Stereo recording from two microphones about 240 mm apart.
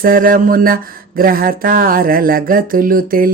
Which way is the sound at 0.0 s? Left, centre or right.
Right.